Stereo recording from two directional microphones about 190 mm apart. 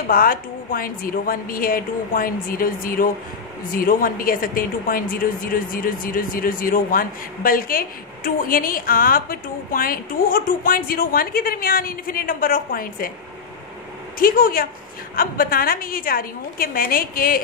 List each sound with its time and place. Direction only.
0.1 s speech: 50° left (ahead or behind)
14.2 s speech: 50° left (ahead or behind)